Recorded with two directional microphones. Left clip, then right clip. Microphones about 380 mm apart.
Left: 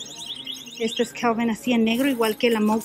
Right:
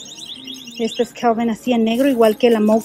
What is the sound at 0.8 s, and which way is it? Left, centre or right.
Speech, centre.